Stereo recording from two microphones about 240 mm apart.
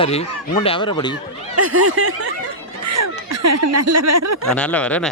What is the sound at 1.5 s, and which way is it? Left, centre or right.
Speech, right.